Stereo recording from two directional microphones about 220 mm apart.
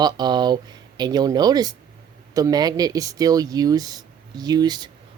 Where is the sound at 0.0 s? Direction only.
20° right (ahead or behind).